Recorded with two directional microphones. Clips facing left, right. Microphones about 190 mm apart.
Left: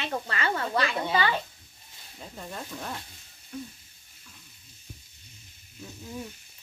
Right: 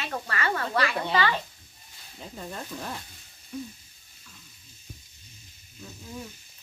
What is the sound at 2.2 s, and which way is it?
Speech, centre (ahead or behind).